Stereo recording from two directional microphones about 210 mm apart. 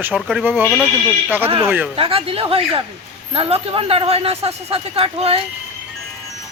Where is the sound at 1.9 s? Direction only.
25° right (ahead or behind).